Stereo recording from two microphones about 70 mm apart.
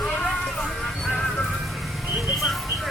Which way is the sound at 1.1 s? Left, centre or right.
Centre.